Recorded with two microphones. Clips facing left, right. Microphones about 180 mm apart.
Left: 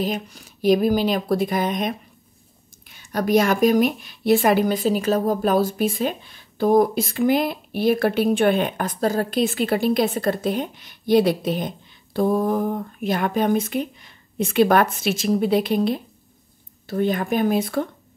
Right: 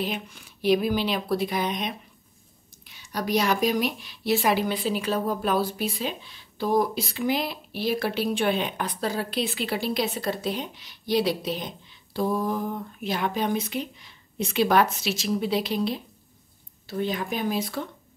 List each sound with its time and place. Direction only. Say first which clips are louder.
0.0 s speech: left 5 dB; 40° left (ahead or behind)